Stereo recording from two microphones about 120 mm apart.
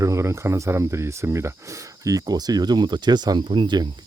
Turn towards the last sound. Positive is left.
turn(degrees=-40)  # may be behind; listen again after turning